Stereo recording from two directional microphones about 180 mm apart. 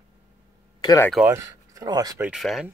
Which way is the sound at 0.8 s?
20° left (ahead or behind).